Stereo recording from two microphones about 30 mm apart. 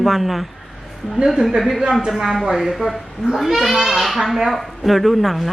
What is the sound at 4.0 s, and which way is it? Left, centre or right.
Speech, centre.